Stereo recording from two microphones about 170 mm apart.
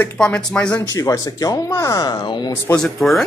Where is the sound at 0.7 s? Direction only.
20° left (ahead or behind).